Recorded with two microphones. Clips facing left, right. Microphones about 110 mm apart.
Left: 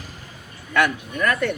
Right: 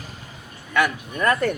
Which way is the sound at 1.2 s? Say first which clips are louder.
Right 1 dB; 30° right (ahead or behind).